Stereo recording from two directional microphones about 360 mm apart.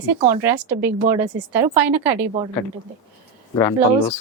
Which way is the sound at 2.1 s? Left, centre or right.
Centre.